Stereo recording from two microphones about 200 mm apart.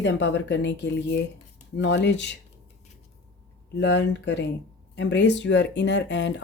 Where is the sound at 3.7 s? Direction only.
60° left (ahead or behind).